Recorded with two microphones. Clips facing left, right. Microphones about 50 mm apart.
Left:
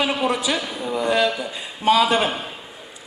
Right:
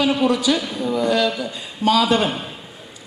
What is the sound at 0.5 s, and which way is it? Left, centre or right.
A man's voice, centre.